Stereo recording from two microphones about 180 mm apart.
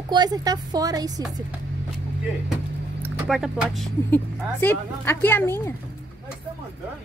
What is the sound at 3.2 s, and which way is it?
Speech, centre (ahead or behind).